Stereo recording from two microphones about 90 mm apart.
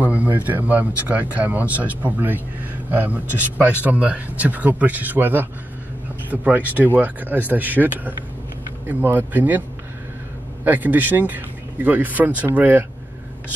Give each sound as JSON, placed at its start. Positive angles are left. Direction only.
{"t": 0.0, "sound": "speech", "side_deg": -20}
{"t": 10.6, "sound": "speech", "side_deg": -20}